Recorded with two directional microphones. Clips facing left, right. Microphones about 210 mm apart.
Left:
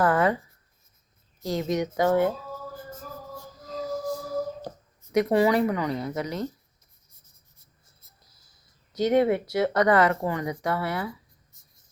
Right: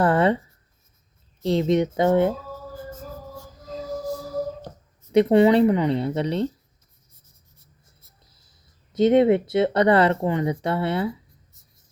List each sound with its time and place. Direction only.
0.0 s writing: 30° right (ahead or behind)
1.4 s speech: 30° right (ahead or behind)
5.1 s speech: 25° right (ahead or behind)
8.9 s speech: 25° right (ahead or behind)